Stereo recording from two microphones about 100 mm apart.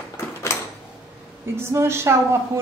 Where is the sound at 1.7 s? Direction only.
25° right (ahead or behind).